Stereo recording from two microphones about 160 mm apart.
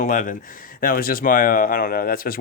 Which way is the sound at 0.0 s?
55° left (ahead or behind).